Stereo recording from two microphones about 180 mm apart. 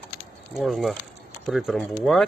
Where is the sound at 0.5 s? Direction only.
Centre (ahead or behind).